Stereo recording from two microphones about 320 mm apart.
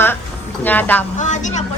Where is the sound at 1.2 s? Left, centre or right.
Left.